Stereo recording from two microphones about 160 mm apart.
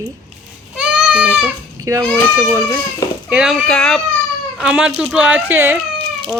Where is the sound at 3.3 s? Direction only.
5° right (ahead or behind).